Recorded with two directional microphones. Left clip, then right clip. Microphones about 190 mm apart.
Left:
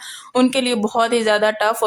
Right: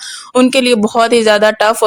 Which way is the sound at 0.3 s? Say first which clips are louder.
Right 7 dB; 35° right (ahead or behind).